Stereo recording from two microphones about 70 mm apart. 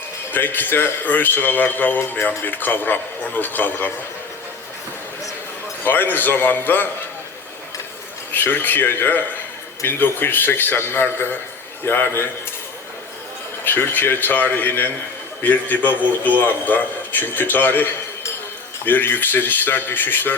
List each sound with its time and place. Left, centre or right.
0.3 s a man's voice: left
5.8 s a man's voice: left
8.3 s a man's voice: left
13.7 s a man's voice: left
18.9 s a man's voice: left